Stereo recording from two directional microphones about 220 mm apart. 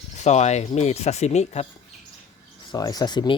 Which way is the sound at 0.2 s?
30° left (ahead or behind).